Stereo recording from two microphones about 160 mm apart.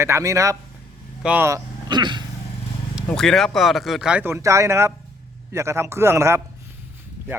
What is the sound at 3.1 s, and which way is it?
Speech, 5° left (ahead or behind).